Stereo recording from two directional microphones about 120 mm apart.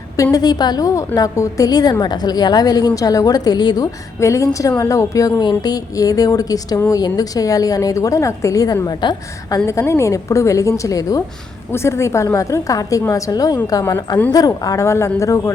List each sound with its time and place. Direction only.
0.2 s a woman's voice: 30° left (ahead or behind)
9.6 s a woman's voice: 25° left (ahead or behind)